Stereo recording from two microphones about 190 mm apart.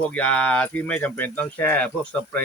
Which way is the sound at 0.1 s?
5° left (ahead or behind).